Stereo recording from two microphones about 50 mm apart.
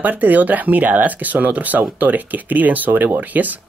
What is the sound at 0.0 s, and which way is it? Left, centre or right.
Speech, right.